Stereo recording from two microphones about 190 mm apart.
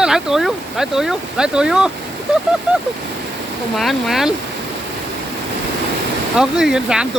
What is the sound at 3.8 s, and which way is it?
Speech, centre (ahead or behind).